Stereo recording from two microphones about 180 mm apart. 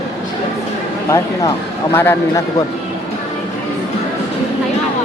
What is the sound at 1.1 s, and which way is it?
A man's voice, 15° left (ahead or behind).